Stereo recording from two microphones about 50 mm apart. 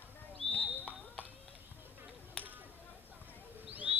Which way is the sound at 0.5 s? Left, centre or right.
Left.